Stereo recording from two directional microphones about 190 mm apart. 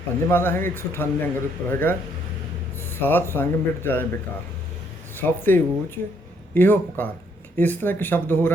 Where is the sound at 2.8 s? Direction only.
10° left (ahead or behind).